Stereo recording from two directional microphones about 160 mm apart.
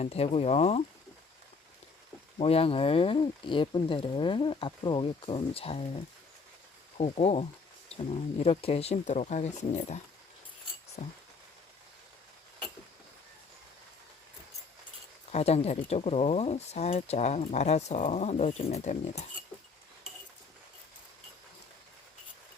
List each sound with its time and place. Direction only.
0.0 s speech: 40° left (ahead or behind)
2.4 s speech: 35° left (ahead or behind)
15.3 s speech: 40° left (ahead or behind)